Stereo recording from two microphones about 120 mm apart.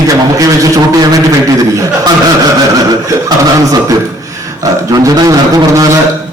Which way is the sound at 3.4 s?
30° right (ahead or behind).